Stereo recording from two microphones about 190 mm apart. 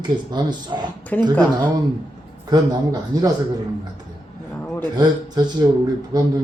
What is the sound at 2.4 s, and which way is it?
Speech, 20° right (ahead or behind).